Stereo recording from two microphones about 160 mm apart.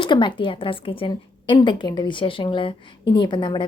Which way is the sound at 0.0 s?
30° left (ahead or behind).